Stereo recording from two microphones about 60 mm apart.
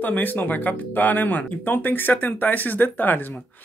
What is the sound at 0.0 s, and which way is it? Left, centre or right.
Speech, left.